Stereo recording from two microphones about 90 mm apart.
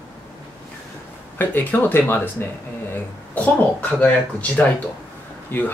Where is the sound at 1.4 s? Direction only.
20° left (ahead or behind).